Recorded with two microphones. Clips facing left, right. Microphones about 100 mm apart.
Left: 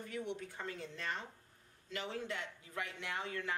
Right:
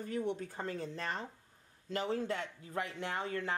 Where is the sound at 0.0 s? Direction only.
35° right (ahead or behind).